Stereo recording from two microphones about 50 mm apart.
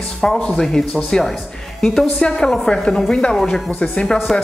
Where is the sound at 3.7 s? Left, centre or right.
Left.